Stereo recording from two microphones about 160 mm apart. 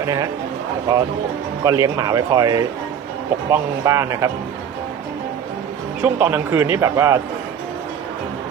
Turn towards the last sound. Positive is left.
turn(degrees=-20)  # may be behind; listen again after turning